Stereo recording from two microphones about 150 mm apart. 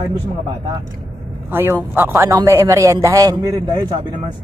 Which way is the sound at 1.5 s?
15° right (ahead or behind).